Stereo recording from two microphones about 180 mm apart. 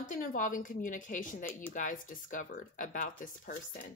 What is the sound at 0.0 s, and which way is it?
A woman's voice, 50° left (ahead or behind).